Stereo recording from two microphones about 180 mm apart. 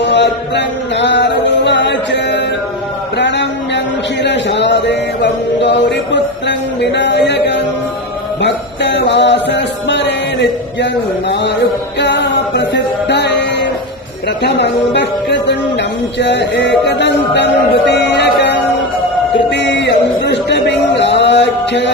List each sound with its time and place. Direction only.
0.0 s music: 75° left (ahead or behind)
3.2 s a sound: 75° left (ahead or behind)
4.2 s mantra: 75° left (ahead or behind)
8.4 s music: 75° left (ahead or behind)
11.9 s music: 75° left (ahead or behind)
14.4 s speech: 75° left (ahead or behind)
19.5 s a sound: 75° left (ahead or behind)